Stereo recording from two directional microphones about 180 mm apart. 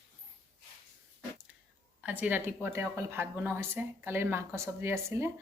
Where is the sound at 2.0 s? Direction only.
10° right (ahead or behind).